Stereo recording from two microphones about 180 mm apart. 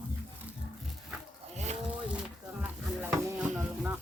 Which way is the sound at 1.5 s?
40° right (ahead or behind).